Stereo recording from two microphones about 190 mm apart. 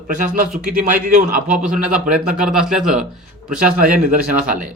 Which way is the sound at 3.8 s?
45° right (ahead or behind).